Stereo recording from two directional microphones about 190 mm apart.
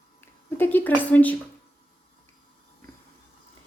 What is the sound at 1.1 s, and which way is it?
Speech, 10° left (ahead or behind).